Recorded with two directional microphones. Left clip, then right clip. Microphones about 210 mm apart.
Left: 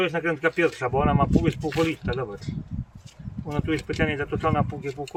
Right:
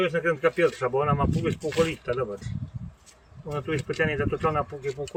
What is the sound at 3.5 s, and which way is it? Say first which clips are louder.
Speech: left 2 dB; 40° left (ahead or behind).